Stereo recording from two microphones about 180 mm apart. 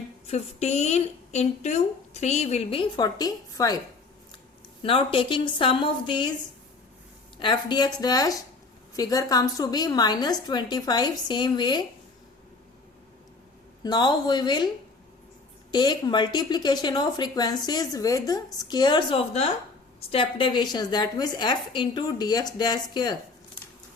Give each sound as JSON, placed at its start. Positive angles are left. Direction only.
{"t": 0.3, "sound": "a woman's voice", "side_deg": 35}
{"t": 4.8, "sound": "a woman's voice", "side_deg": 30}
{"t": 7.3, "sound": "a woman's voice", "side_deg": 25}
{"t": 13.8, "sound": "a woman's voice", "side_deg": 25}
{"t": 15.7, "sound": "a woman's voice", "side_deg": 25}